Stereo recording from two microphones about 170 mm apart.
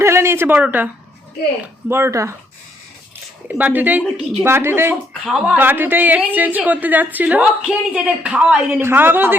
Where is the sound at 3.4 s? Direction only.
10° right (ahead or behind).